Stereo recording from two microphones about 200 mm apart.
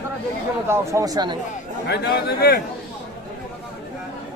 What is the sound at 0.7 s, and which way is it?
Speech, 15° right (ahead or behind).